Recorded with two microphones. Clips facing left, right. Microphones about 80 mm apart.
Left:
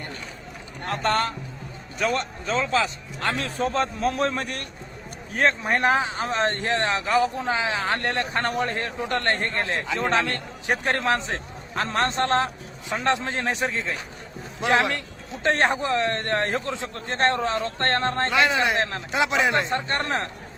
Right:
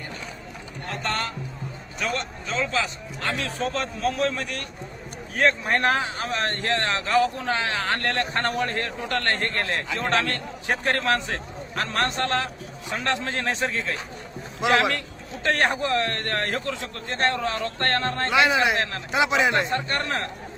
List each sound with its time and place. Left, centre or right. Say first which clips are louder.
0.9 s a man's voice: left 5 dB; left
5.6 s speech: left 1 dB; centre
12.9 s speech: left 3 dB; left
18.3 s speech: right 3 dB; centre
18.8 s speech: left 1 dB; left
19.1 s speech: right 1 dB; centre
19.6 s speech: even; left